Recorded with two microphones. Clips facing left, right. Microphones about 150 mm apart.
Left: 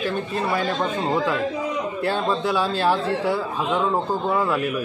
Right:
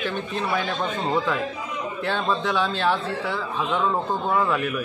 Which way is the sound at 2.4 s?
10° left (ahead or behind).